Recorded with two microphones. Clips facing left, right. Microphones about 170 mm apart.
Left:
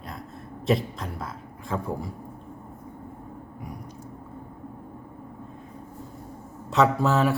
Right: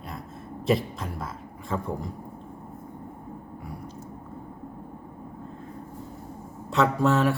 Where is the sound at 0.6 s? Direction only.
Centre (ahead or behind).